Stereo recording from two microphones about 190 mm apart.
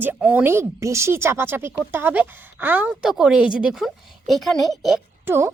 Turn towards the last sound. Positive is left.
turn(degrees=-15)  # may be behind; listen again after turning